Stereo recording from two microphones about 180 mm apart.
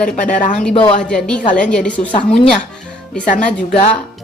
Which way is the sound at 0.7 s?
30° left (ahead or behind).